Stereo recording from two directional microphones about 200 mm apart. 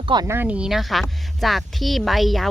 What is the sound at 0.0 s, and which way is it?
Speech, 20° right (ahead or behind).